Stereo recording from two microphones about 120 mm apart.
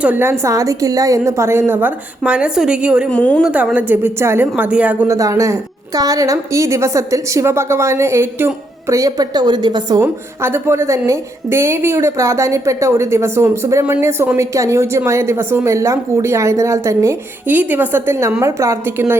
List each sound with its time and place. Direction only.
0.0 s a woman's voice: 15° right (ahead or behind)
3.1 s a woman's voice: 10° left (ahead or behind)
3.4 s a woman's voice: 10° right (ahead or behind)
5.0 s a woman's voice: 25° right (ahead or behind)
10.0 s a woman's voice: 20° right (ahead or behind)